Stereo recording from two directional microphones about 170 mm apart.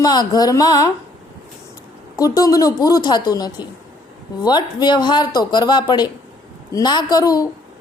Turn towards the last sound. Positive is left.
turn(degrees=20)  # may be behind; listen again after turning